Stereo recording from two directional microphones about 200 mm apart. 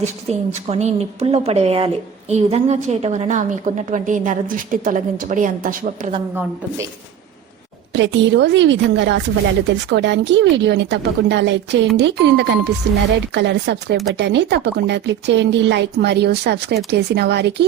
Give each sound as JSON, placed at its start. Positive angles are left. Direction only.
{"t": 0.3, "sound": "a woman's voice", "side_deg": -35}
{"t": 7.9, "sound": "speech", "side_deg": -65}